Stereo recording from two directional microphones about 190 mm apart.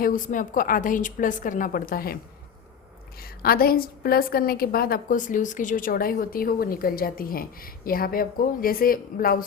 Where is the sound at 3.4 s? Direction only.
50° left (ahead or behind).